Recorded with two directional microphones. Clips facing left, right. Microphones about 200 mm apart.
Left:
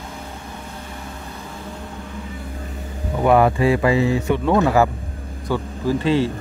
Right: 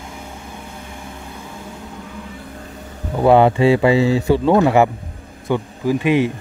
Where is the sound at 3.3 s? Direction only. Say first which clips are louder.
Right 3 dB; 25° right (ahead or behind).